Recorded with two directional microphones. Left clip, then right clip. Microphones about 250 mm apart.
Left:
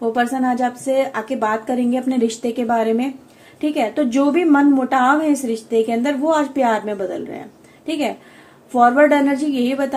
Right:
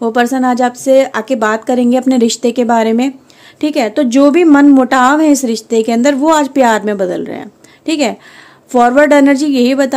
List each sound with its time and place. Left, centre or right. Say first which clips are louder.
0.0 s a woman's voice: right 7 dB; right